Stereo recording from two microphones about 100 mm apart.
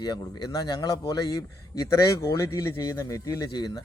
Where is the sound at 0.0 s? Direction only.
45° left (ahead or behind).